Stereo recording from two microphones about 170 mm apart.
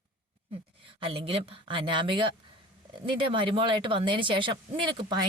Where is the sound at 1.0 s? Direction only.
35° right (ahead or behind).